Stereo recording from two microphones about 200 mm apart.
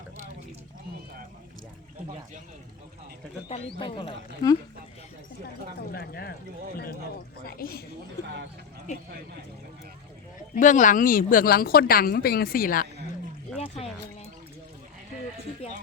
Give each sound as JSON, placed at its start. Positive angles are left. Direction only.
{"t": 3.8, "sound": "speech", "side_deg": 25}
{"t": 5.9, "sound": "a woman's voice", "side_deg": 50}
{"t": 7.4, "sound": "a woman's voice", "side_deg": 50}
{"t": 10.5, "sound": "a woman's voice", "side_deg": 40}
{"t": 13.6, "sound": "music", "side_deg": 30}